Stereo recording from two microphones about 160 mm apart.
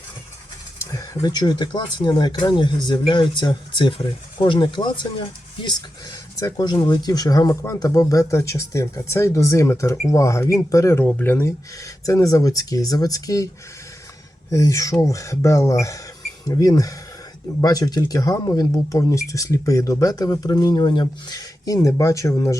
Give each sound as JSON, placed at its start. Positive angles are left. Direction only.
{"t": 0.9, "sound": "speech", "side_deg": 20}
{"t": 14.5, "sound": "speech", "side_deg": 20}